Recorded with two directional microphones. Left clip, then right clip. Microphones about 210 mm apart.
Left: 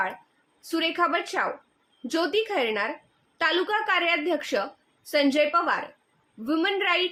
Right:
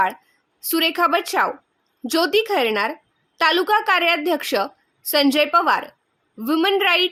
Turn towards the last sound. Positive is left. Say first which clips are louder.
# right 7 dB
turn(degrees=-55)  # may be behind; listen again after turning